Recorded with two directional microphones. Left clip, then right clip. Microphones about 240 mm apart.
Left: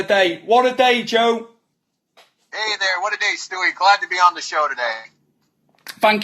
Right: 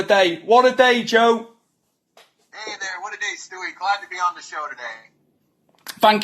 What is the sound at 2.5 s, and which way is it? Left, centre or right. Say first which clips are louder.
Speech: left 10 dB; left.